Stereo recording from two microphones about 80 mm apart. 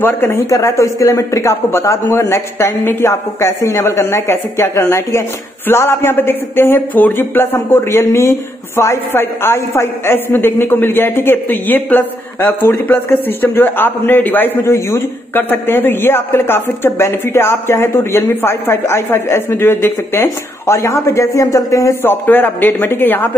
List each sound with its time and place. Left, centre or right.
0.0 s speech: left
0.5 s a man's voice: left
22.0 s speech: left